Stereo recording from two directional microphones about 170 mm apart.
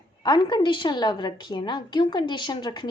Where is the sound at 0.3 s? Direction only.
25° left (ahead or behind).